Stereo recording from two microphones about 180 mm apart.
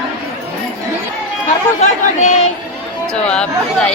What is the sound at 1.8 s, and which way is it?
Speech, 40° left (ahead or behind).